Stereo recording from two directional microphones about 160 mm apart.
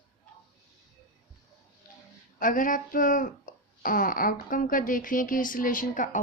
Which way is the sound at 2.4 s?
60° left (ahead or behind).